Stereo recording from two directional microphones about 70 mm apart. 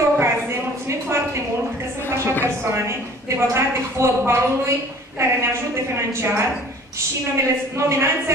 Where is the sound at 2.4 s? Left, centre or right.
Right.